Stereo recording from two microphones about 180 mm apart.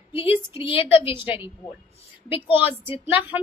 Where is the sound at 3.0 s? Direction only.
10° right (ahead or behind).